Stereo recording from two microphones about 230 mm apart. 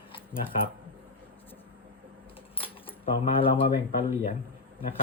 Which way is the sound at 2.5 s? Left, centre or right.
Left.